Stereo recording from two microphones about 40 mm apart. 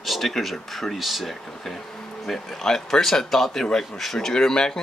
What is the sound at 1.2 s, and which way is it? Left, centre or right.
Speech, centre.